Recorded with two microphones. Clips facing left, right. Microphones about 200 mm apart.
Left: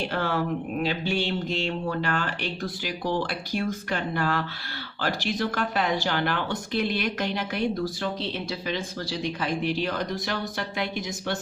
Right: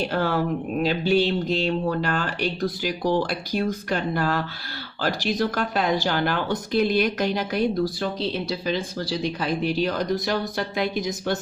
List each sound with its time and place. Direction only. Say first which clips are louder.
0.1 s speech: right 3 dB; 40° right (ahead or behind)